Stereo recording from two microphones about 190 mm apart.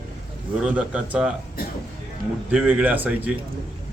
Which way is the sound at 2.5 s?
5° right (ahead or behind).